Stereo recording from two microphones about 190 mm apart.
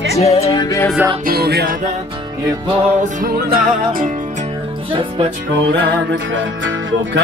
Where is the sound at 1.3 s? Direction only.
55° right (ahead or behind).